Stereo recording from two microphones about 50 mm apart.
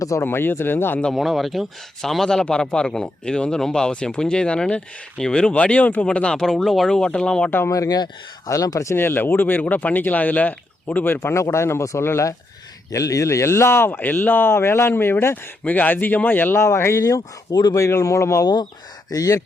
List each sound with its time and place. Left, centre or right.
0.2 s speech: left
1.1 s speech: centre; by 6.1 s left
6.1 s speech: centre
8.4 s a man's voice: left
9.0 s speech: left
12.0 s speech: left
12.9 s speech: left
14.0 s speech: left
15.6 s speech: left
16.6 s a man's voice: left